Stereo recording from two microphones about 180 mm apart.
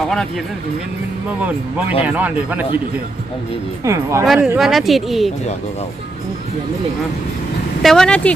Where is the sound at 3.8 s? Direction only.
15° right (ahead or behind).